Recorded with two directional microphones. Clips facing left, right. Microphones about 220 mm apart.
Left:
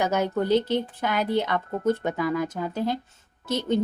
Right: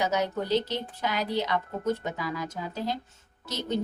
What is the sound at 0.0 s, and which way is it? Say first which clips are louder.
A woman's voice: left 4 dB; 55° left (ahead or behind).